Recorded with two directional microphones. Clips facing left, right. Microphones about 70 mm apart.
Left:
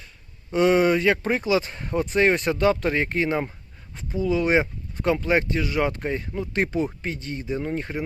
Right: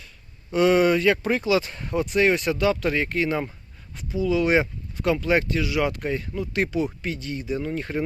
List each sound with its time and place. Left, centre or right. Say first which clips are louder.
0.5 s speech: even; left